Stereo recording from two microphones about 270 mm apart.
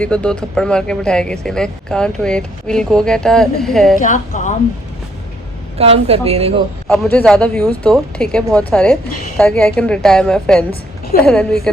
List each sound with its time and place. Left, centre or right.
0.0 s speech: centre
4.0 s a woman's voice: left
5.7 s a woman's voice: right
6.8 s speech: centre
11.1 s a woman's voice: left